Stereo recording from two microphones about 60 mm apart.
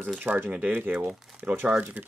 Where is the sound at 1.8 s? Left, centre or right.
Right.